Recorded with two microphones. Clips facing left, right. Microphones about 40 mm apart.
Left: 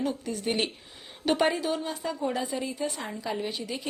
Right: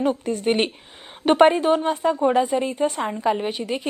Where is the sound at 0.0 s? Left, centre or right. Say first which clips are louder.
Right 8 dB; right.